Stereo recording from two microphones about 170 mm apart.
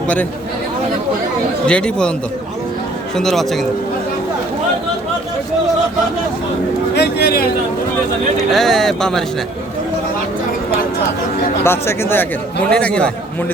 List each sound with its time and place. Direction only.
1.6 s speech: 5° left (ahead or behind)
3.2 s speech: centre (ahead or behind)
6.9 s a sound: 70° left (ahead or behind)
8.4 s speech: centre (ahead or behind)
11.6 s speech: 15° left (ahead or behind)